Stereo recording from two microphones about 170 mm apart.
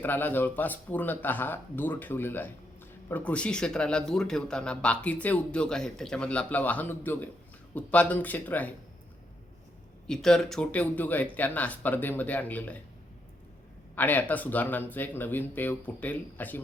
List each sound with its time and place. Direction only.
0.0 s speech: 10° left (ahead or behind)
10.1 s speech: 5° left (ahead or behind)
13.9 s speech: 10° left (ahead or behind)